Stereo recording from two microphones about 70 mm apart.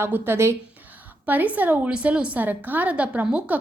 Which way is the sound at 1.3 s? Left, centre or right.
Right.